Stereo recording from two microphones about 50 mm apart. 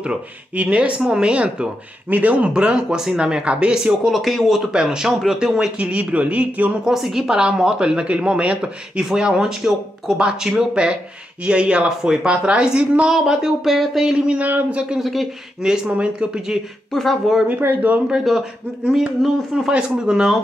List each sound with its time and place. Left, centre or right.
0.0 s speech: right
2.0 s speech: right; by 3.9 s centre
4.0 s speech: centre
4.7 s speech: centre
5.8 s speech: right
6.8 s speech: centre
13.1 s speech: centre
15.0 s speech: centre
15.9 s speech: centre
16.9 s speech: centre
17.6 s speech: right
18.9 s speech: centre